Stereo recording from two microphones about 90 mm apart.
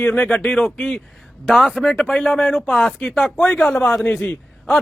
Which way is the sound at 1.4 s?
5° right (ahead or behind).